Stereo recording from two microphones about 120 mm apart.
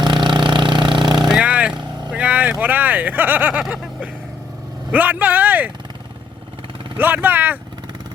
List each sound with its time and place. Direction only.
0.0 s vehicle: 40° right (ahead or behind)
1.3 s vehicle: 10° right (ahead or behind)
1.7 s vehicle: 40° right (ahead or behind)
2.0 s vehicle: 10° right (ahead or behind)
4.9 s speech: 15° right (ahead or behind)
7.0 s speech: 15° right (ahead or behind)